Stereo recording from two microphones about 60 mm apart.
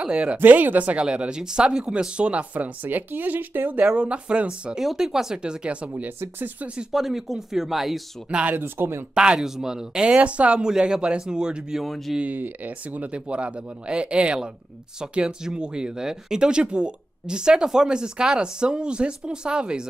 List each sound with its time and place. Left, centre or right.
0.0 s speech: centre
0.4 s speech: right
3.9 s speech: centre
5.9 s speech: right
6.9 s speech: centre
8.3 s speech: centre
8.5 s speech: right
9.1 s speech: centre
11.8 s speech: centre
12.2 s speech: right